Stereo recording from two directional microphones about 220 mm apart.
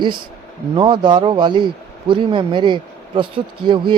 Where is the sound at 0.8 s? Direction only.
20° right (ahead or behind).